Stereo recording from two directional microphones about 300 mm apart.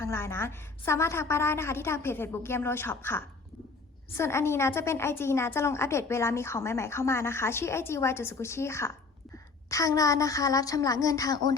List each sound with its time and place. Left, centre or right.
0.0 s a woman's voice: centre